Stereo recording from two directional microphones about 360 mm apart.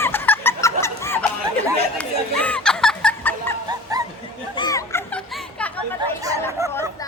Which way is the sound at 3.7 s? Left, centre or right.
Centre.